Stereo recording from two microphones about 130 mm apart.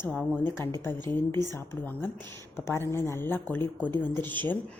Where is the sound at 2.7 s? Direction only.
20° left (ahead or behind).